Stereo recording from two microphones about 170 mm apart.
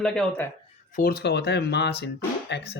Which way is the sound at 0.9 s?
70° left (ahead or behind).